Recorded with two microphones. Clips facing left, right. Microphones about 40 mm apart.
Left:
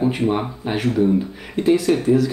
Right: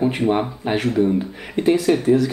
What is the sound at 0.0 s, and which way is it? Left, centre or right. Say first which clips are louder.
Speech: right 1 dB; centre.